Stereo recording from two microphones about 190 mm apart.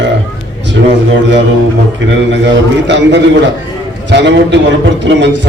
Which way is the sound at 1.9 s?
70° right (ahead or behind).